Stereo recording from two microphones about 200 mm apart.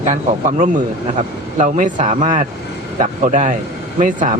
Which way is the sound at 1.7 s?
40° right (ahead or behind).